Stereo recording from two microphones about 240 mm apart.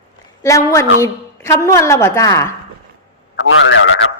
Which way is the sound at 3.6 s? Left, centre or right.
Left.